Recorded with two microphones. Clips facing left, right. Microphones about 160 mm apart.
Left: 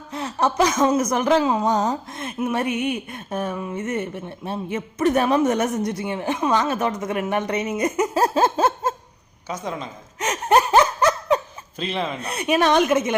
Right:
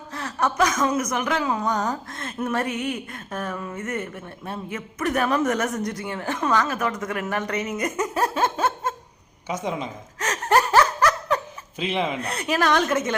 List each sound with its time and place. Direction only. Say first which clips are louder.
0.1 s speech: left 3 dB; 20° left (ahead or behind)
9.5 s a woman's voice: right 2 dB; 15° right (ahead or behind)
10.2 s laughter: left 2 dB; 20° left (ahead or behind)
11.8 s a woman's voice: right 1 dB; 15° right (ahead or behind)
12.2 s speech: left 3 dB; 20° left (ahead or behind)